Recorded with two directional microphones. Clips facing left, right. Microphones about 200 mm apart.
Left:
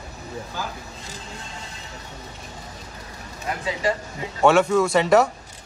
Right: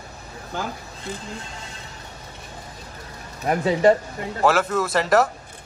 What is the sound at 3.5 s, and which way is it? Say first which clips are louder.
Speech: right 8 dB; 50° right (ahead or behind).